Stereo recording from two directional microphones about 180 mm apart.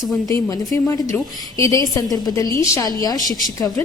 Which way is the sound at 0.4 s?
20° left (ahead or behind).